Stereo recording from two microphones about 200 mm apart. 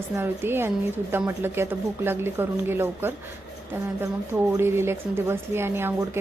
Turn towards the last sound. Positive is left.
turn(degrees=-10)  # may be behind; listen again after turning